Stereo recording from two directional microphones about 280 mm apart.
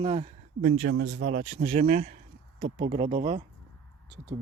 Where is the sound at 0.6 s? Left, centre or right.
Right.